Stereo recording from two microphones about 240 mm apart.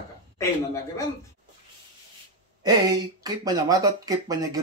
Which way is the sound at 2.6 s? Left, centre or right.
Centre.